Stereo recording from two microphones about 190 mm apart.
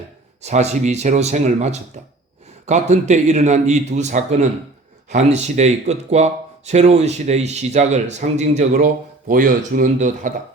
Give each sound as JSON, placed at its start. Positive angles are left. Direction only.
{"t": 0.4, "sound": "speech", "side_deg": -35}